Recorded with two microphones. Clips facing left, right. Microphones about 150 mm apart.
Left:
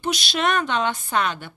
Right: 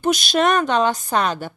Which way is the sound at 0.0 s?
45° right (ahead or behind).